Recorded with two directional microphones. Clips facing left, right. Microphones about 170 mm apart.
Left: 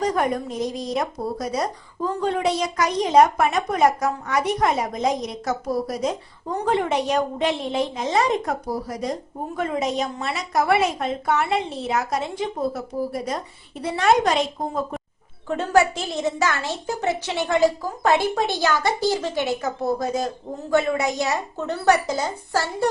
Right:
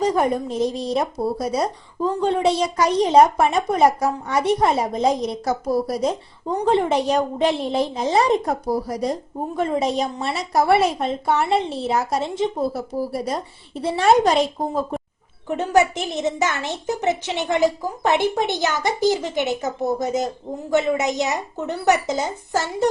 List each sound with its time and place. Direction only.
0.0 s a sound: 25° right (ahead or behind)
0.4 s a woman's voice: 30° right (ahead or behind)
15.4 s a woman's voice: 20° right (ahead or behind)